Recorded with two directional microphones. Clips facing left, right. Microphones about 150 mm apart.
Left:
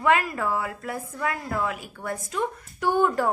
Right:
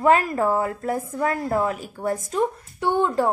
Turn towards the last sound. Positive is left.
turn(degrees=-25)  # may be behind; listen again after turning